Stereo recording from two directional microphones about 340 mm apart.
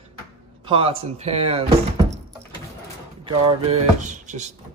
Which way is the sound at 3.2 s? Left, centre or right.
Centre.